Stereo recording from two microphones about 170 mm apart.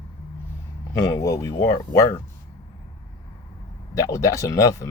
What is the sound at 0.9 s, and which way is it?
Speech, 20° left (ahead or behind).